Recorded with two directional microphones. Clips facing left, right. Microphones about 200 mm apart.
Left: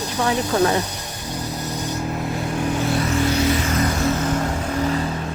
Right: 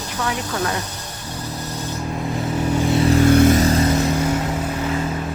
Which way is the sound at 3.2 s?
50° right (ahead or behind).